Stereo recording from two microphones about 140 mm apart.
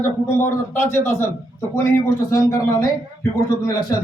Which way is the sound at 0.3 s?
20° left (ahead or behind).